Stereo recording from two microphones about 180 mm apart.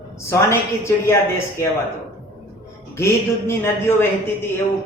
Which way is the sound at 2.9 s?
15° left (ahead or behind).